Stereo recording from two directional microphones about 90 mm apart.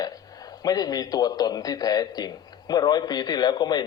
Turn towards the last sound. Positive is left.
turn(degrees=50)  # may be behind; listen again after turning